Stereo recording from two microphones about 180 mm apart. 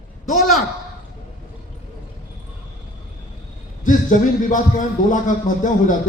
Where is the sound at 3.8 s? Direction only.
45° left (ahead or behind).